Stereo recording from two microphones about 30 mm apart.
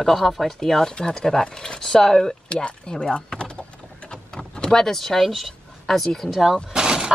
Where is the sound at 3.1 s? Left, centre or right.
Left.